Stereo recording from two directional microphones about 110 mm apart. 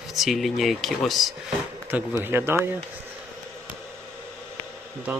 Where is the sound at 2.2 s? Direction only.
20° right (ahead or behind).